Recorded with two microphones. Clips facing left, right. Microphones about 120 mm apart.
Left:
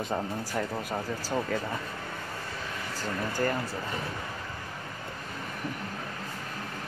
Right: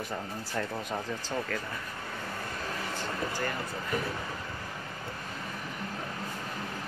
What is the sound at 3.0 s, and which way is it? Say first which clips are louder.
Speech: left 6 dB; 40° left (ahead or behind).